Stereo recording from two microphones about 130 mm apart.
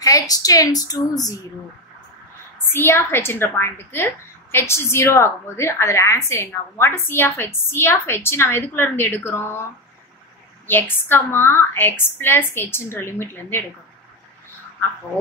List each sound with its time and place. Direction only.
0.0 s a woman's voice: 25° left (ahead or behind)
2.7 s a woman's voice: 15° left (ahead or behind)
10.7 s a woman's voice: 15° left (ahead or behind)